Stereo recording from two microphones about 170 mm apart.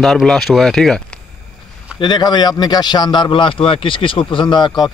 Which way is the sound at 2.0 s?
25° left (ahead or behind).